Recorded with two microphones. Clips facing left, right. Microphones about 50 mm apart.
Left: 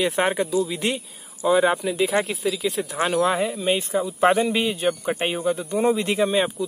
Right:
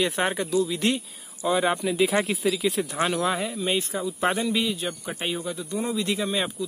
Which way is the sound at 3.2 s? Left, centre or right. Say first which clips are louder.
Left 4 dB; centre.